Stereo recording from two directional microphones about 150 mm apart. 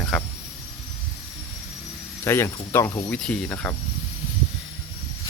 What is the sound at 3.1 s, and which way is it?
Speech, 5° left (ahead or behind).